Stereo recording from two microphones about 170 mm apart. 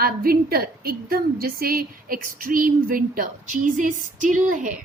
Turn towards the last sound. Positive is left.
turn(degrees=-50)  # may be behind; listen again after turning